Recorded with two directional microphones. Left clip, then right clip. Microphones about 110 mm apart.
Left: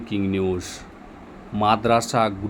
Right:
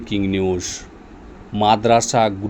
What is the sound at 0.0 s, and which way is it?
A man's voice, 35° right (ahead or behind).